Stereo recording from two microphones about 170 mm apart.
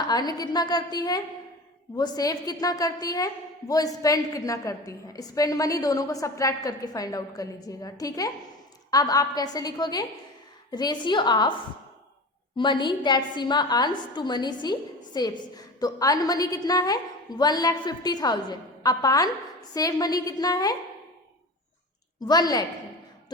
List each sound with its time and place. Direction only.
0.1 s a woman's voice: 25° left (ahead or behind)
12.5 s a woman's voice: 25° left (ahead or behind)
22.2 s a woman's voice: 25° left (ahead or behind)